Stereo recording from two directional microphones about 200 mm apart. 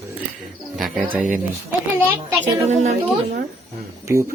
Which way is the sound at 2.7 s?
35° right (ahead or behind).